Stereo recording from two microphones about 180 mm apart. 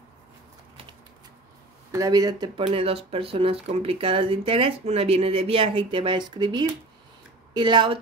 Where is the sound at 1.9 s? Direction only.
20° right (ahead or behind).